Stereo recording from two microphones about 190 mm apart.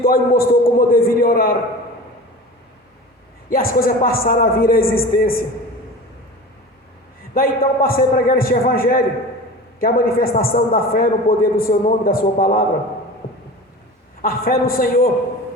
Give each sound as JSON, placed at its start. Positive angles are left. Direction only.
{"t": 0.0, "sound": "a man's voice", "side_deg": 50}
{"t": 3.5, "sound": "a man's voice", "side_deg": 50}
{"t": 7.3, "sound": "a man's voice", "side_deg": 50}
{"t": 14.2, "sound": "a man's voice", "side_deg": 50}